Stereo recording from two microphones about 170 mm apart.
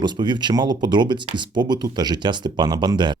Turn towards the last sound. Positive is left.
turn(degrees=-25)  # may be behind; listen again after turning